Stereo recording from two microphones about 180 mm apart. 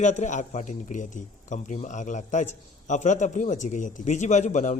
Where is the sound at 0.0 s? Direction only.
40° left (ahead or behind).